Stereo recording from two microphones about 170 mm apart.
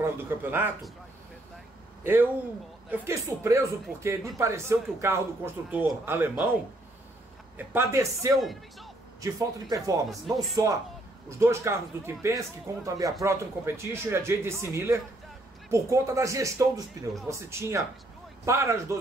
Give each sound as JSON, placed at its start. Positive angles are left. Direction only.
{"t": 0.0, "sound": "speech", "side_deg": -10}
{"t": 2.9, "sound": "speech", "side_deg": -15}
{"t": 7.5, "sound": "speech", "side_deg": -15}
{"t": 8.4, "sound": "speech", "side_deg": 0}
{"t": 9.2, "sound": "speech", "side_deg": -20}
{"t": 10.0, "sound": "speech", "side_deg": 0}
{"t": 10.5, "sound": "speech", "side_deg": -20}